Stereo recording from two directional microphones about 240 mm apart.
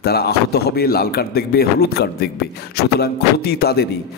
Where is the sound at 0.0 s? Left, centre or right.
Left.